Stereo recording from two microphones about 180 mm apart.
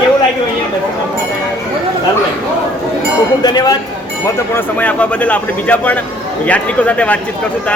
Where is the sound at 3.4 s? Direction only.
20° left (ahead or behind).